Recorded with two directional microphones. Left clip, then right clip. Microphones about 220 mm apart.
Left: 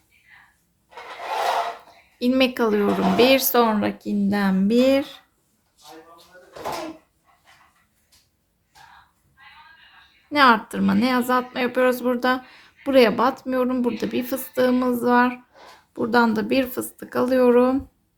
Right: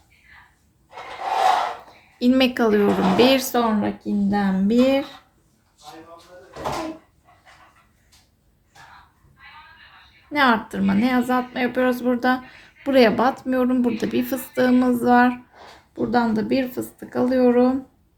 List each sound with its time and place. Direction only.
2.1 s a woman's voice: 5° left (ahead or behind)
3.5 s speech: 20° left (ahead or behind)
10.3 s a woman's voice: 15° left (ahead or behind)
15.9 s speech: 20° left (ahead or behind)